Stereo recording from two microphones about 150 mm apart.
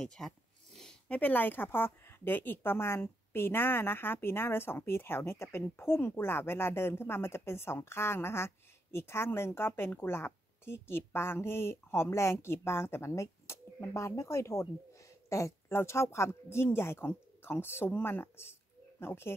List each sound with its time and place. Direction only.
0.0 s a woman's voice: 5° left (ahead or behind)